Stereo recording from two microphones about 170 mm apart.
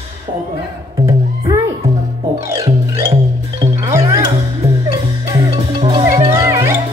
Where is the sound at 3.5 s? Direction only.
20° right (ahead or behind).